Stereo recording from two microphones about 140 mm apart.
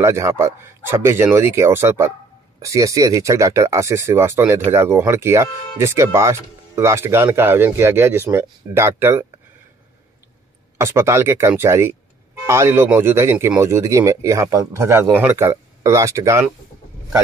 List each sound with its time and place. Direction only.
0.0 s speech: 20° right (ahead or behind)
10.8 s speech: 20° right (ahead or behind)